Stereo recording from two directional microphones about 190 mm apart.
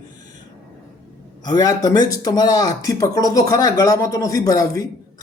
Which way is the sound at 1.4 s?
20° left (ahead or behind).